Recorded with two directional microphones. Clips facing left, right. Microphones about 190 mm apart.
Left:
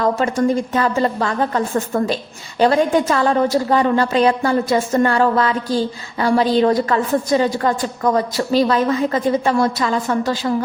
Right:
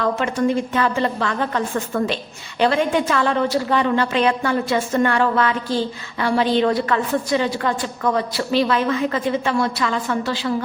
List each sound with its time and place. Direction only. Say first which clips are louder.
0.0 s a woman's voice: left 3 dB; 40° left (ahead or behind)